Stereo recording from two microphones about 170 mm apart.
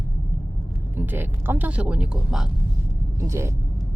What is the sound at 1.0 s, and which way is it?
Speech, 10° right (ahead or behind).